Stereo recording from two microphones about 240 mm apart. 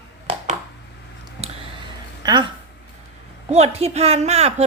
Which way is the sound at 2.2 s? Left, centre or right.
Centre.